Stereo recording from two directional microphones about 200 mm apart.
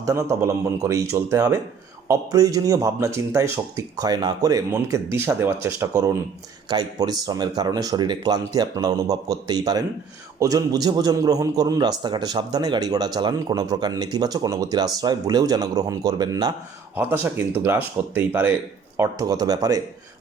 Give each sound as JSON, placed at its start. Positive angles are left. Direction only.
{"t": 0.0, "sound": "a man's voice", "side_deg": -15}
{"t": 16.9, "sound": "a man's voice", "side_deg": -10}